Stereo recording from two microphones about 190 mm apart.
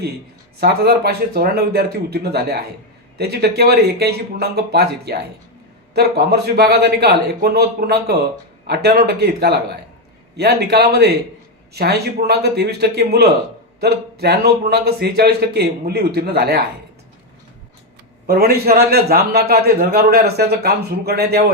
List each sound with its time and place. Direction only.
0.6 s a man's voice: 55° right (ahead or behind)
18.3 s a man's voice: 55° right (ahead or behind)